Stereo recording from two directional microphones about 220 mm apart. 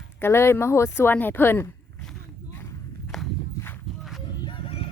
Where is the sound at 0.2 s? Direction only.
10° left (ahead or behind).